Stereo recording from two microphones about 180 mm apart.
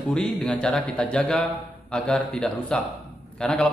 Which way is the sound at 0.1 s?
5° left (ahead or behind).